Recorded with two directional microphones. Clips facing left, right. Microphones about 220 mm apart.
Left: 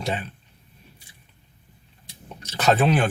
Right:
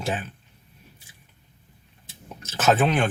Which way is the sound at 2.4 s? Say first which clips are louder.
Left 1 dB; 5° right (ahead or behind).